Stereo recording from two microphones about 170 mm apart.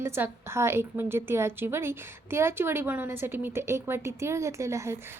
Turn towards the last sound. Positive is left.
turn(degrees=-15)  # may be behind; listen again after turning